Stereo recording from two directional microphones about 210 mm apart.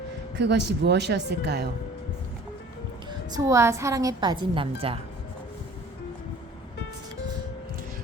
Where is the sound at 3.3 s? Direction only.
15° right (ahead or behind).